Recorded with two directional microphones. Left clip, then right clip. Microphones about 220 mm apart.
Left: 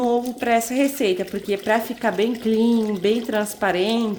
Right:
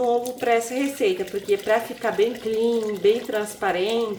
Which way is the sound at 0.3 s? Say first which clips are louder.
Left 2 dB; 50° left (ahead or behind).